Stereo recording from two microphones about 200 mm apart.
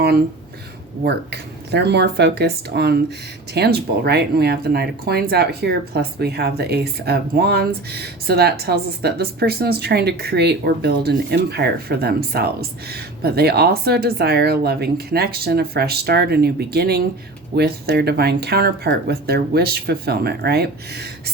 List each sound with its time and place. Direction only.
1.0 s speech: 55° right (ahead or behind)